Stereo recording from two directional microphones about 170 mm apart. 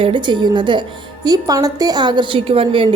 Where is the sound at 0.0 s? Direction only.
30° right (ahead or behind).